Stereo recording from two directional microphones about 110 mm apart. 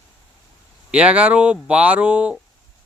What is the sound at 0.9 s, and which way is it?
Speech, 10° right (ahead or behind).